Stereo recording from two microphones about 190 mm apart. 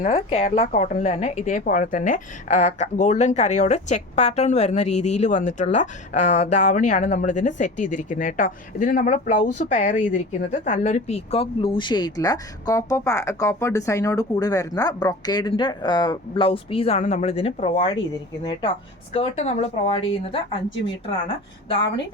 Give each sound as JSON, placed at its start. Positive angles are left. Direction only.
{"t": 0.0, "sound": "speech", "side_deg": 40}
{"t": 19.1, "sound": "speech", "side_deg": 35}